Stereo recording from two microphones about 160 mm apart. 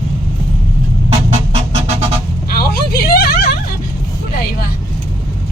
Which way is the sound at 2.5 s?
70° left (ahead or behind).